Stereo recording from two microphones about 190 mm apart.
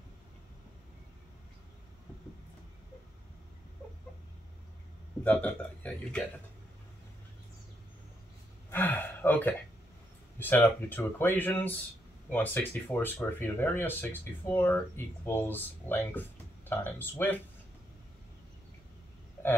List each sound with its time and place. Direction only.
5.2 s speech: 5° left (ahead or behind)
8.6 s gasp: 10° left (ahead or behind)
10.4 s speech: 10° left (ahead or behind)
19.4 s burping: 10° left (ahead or behind)